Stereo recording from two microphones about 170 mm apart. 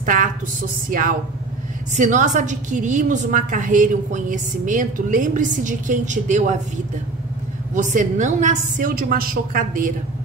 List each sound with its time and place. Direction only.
0.0 s a woman's voice: 50° right (ahead or behind)
7.7 s a woman's voice: 50° right (ahead or behind)